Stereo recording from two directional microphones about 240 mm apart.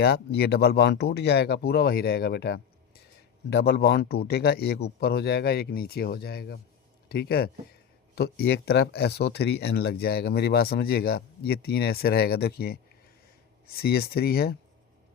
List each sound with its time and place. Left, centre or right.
0.0 s speech: left